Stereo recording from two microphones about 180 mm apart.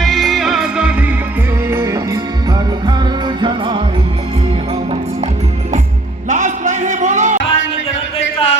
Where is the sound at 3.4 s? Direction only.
25° right (ahead or behind).